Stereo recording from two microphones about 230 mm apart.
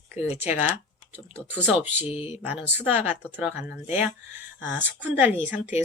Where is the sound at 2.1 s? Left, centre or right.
Left.